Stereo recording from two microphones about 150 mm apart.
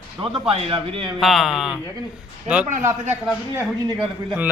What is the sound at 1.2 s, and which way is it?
Speech, centre (ahead or behind).